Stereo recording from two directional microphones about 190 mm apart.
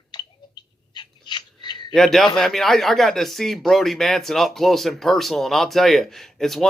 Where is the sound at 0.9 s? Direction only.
25° left (ahead or behind).